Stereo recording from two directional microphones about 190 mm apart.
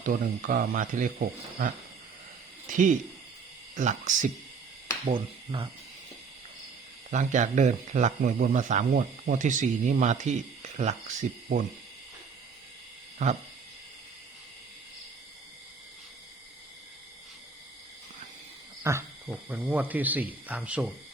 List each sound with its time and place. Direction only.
0.0 s speech: 45° right (ahead or behind)
2.6 s hoot: 45° right (ahead or behind)
3.8 s speech: 40° right (ahead or behind)
5.0 s speech: 30° right (ahead or behind)
7.1 s speech: 40° right (ahead or behind)
18.8 s speech: 15° right (ahead or behind)